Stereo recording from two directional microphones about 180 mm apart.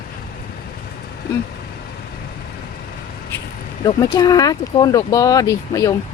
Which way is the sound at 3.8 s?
20° left (ahead or behind).